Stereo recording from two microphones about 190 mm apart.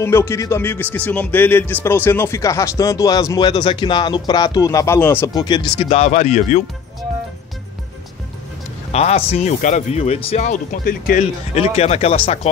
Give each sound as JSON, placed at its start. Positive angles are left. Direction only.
{"t": 0.0, "sound": "speech", "side_deg": 15}
{"t": 5.9, "sound": "speech", "side_deg": 35}
{"t": 8.9, "sound": "speech", "side_deg": 35}